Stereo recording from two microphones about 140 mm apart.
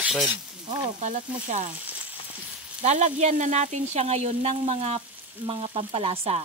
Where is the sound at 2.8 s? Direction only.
55° right (ahead or behind).